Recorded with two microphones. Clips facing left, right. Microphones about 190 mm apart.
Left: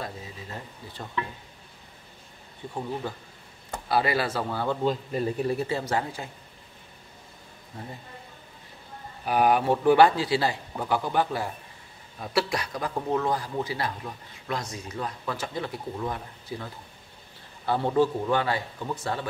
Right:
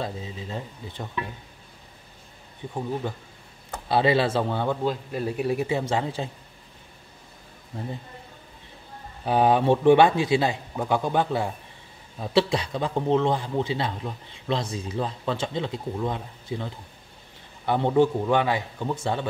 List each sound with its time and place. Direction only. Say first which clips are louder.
0.0 s a man's voice: right 5 dB; 25° right (ahead or behind)
2.6 s a man's voice: right 2 dB; 15° right (ahead or behind)
3.9 s a man's voice: right 4 dB; 25° right (ahead or behind)
4.6 s a man's voice: even; 5° right (ahead or behind); by 6.3 s 25° right (ahead or behind)
9.2 s a man's voice: right 2 dB; 25° right (ahead or behind)